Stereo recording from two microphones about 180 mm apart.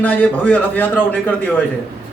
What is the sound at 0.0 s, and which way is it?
A man's voice, 10° left (ahead or behind).